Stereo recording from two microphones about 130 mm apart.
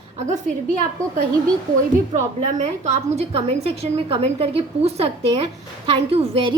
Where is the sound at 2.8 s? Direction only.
55° right (ahead or behind).